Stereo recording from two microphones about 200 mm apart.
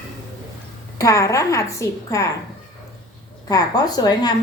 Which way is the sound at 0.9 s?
15° left (ahead or behind).